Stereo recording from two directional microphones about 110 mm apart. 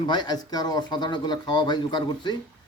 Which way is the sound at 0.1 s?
40° left (ahead or behind).